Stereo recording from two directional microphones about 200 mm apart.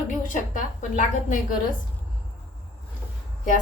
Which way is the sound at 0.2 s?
40° left (ahead or behind).